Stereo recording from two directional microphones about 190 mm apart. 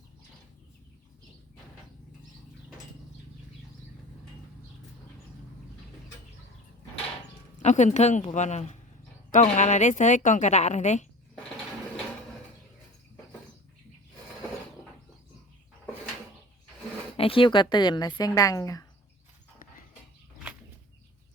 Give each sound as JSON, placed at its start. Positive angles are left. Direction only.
{"t": 7.6, "sound": "a woman's voice", "side_deg": 40}
{"t": 17.2, "sound": "speech", "side_deg": 30}